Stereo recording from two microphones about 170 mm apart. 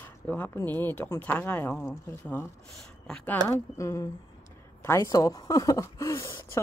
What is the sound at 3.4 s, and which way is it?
Speech, 25° right (ahead or behind).